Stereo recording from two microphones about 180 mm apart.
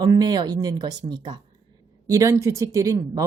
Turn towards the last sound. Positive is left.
turn(degrees=-20)  # may be behind; listen again after turning